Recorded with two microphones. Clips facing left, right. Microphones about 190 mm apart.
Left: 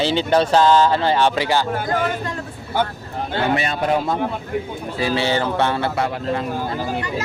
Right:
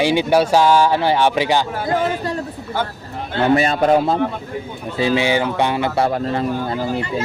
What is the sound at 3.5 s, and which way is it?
Speech, 40° right (ahead or behind).